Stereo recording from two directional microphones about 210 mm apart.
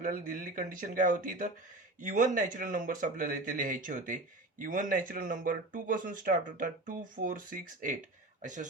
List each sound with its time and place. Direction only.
0.0 s speech: 40° right (ahead or behind)